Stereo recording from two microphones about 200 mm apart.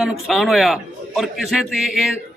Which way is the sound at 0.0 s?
Centre (ahead or behind).